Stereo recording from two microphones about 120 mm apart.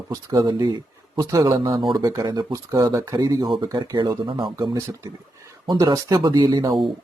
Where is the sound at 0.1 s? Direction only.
35° right (ahead or behind).